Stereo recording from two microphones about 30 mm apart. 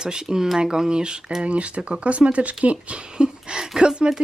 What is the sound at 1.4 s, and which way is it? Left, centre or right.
Speech, right.